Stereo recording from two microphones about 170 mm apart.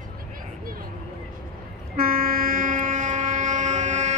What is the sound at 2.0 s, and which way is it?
Train, 60° right (ahead or behind).